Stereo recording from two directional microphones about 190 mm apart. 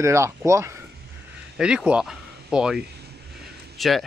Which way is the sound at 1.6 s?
5° right (ahead or behind).